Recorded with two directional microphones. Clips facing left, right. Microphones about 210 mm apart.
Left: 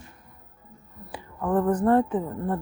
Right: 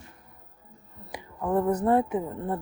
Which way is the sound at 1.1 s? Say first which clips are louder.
Left 1 dB; 20° right (ahead or behind).